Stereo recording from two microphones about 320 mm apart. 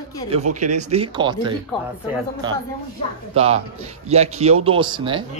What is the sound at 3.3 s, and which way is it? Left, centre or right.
A man's voice, centre.